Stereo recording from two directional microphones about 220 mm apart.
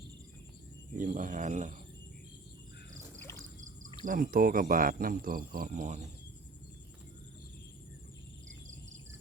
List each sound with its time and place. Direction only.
0.9 s speech: 35° right (ahead or behind)
2.9 s cricket: 10° right (ahead or behind)
4.0 s speech: 40° right (ahead or behind)